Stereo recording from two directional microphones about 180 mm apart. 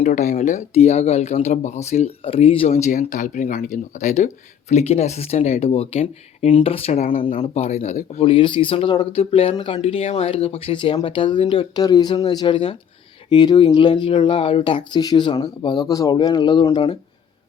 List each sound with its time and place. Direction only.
0.0 s speech: 45° left (ahead or behind); by 17.0 s 30° left (ahead or behind)